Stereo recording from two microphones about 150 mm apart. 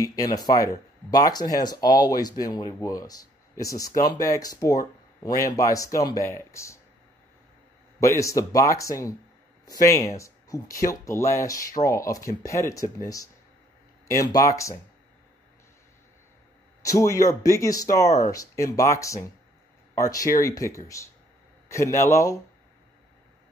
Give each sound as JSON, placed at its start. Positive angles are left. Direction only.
{"t": 0.0, "sound": "speech", "side_deg": 25}
{"t": 8.0, "sound": "speech", "side_deg": 20}
{"t": 16.8, "sound": "speech", "side_deg": 20}